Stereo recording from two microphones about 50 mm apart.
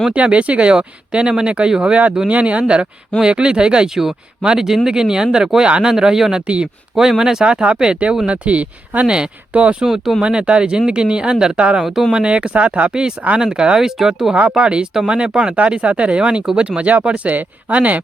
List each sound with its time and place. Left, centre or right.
0.1 s speech: right
5.9 s speech: centre; by 9.0 s right
9.0 s speech: centre
9.8 s speech: centre
10.2 s speech: right
11.8 s speech: centre
12.1 s speech: centre
12.9 s speech: centre
14.5 s speech: centre